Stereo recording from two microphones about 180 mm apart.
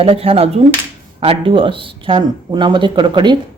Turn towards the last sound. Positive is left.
turn(degrees=-25)  # may be behind; listen again after turning